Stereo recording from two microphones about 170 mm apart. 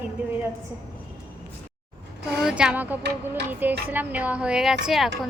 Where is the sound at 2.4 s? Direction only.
5° right (ahead or behind).